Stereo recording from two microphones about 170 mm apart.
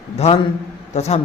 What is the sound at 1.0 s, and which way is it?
Speech, 40° left (ahead or behind).